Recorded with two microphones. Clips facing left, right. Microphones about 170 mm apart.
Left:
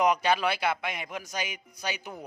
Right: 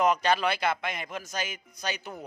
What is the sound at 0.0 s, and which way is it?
Speech, 10° left (ahead or behind).